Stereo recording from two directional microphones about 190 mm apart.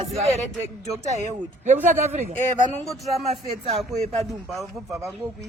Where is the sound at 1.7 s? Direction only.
35° right (ahead or behind).